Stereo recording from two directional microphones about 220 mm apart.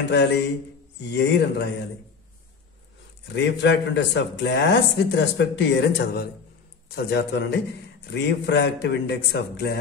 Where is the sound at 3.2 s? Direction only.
50° left (ahead or behind).